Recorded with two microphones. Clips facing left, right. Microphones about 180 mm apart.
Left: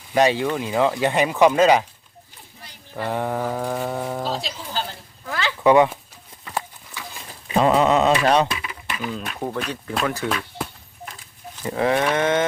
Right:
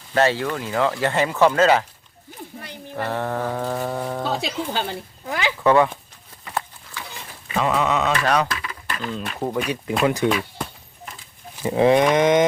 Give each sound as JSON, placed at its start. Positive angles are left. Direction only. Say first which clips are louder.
{"t": 0.1, "sound": "speech", "louder": "left 1 dB", "side_deg": 15}
{"t": 3.0, "sound": "speech", "louder": "left 1 dB", "side_deg": 15}
{"t": 4.2, "sound": "speech", "louder": "right 3 dB", "side_deg": -60}
{"t": 5.2, "sound": "speech", "louder": "right 1 dB", "side_deg": -15}
{"t": 5.6, "sound": "speech", "louder": "left 2 dB", "side_deg": 15}
{"t": 7.5, "sound": "a sound", "louder": "left 4 dB", "side_deg": 30}
{"t": 8.3, "sound": "speech", "louder": "left 2 dB", "side_deg": 20}
{"t": 9.5, "sound": "livestock", "louder": "right 3 dB", "side_deg": -15}
{"t": 10.0, "sound": "speech", "louder": "right 5 dB", "side_deg": -20}
{"t": 10.2, "sound": "a sound", "louder": "right 4 dB", "side_deg": 0}
{"t": 11.5, "sound": "livestock", "louder": "right 5 dB", "side_deg": -15}